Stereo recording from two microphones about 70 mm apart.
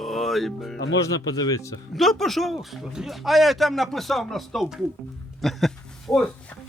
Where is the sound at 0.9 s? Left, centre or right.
Left.